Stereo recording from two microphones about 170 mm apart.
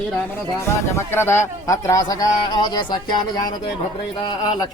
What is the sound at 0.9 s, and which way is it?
A man's voice, 15° left (ahead or behind).